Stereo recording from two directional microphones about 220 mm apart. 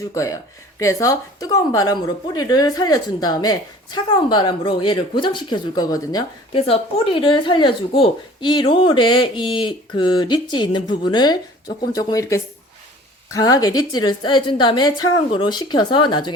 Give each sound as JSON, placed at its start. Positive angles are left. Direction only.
{"t": 0.1, "sound": "speech", "side_deg": 15}